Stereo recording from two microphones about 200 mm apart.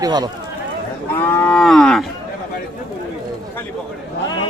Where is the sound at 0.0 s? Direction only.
20° right (ahead or behind).